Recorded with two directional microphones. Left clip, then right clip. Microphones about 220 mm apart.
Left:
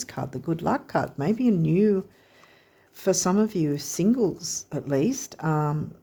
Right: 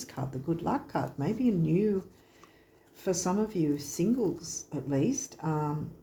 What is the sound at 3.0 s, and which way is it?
Speech, 50° left (ahead or behind).